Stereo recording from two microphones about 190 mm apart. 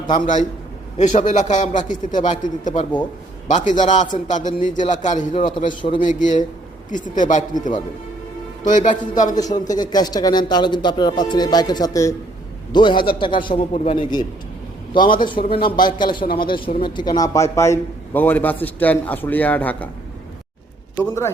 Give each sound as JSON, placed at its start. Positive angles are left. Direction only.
{"t": 0.9, "sound": "a man's voice", "side_deg": 40}
{"t": 5.4, "sound": "a man's voice", "side_deg": 25}
{"t": 6.0, "sound": "a man's voice", "side_deg": 45}
{"t": 9.3, "sound": "a man's voice", "side_deg": 20}